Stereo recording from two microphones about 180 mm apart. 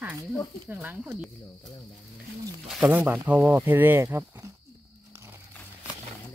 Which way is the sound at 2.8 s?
10° right (ahead or behind).